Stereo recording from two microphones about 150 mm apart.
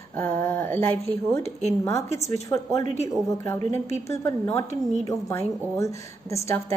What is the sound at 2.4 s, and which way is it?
Speech, 20° left (ahead or behind).